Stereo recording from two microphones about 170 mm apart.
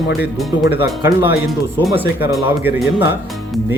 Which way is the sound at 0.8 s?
10° right (ahead or behind).